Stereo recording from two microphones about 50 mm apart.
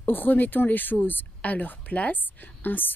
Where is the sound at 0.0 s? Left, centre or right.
Left.